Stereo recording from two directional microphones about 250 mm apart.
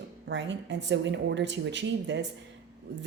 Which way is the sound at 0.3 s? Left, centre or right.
Right.